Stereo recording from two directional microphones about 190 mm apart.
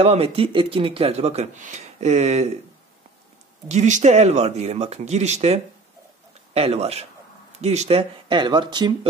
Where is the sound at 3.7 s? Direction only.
40° right (ahead or behind).